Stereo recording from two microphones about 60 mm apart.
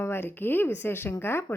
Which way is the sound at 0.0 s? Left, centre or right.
Left.